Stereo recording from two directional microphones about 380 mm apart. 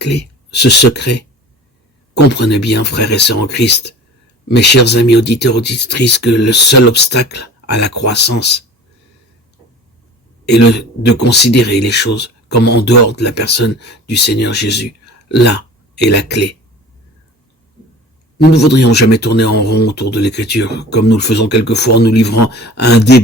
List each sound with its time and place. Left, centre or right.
0.0 s speech: left
11.2 s speech: left
18.3 s speech: left